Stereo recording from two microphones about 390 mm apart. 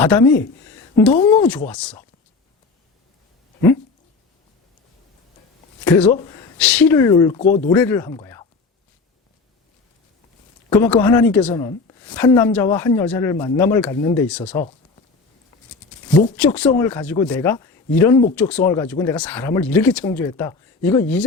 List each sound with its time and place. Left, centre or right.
0.0 s a woman's voice: centre
5.8 s speech: centre
7.8 s speech: centre
10.7 s a woman's voice: centre
16.3 s a woman's voice: centre